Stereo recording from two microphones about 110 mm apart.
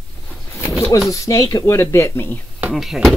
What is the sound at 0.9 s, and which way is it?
Speech, 30° left (ahead or behind).